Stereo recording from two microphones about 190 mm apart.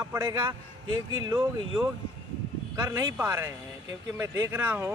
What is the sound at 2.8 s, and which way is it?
Speech, 15° right (ahead or behind).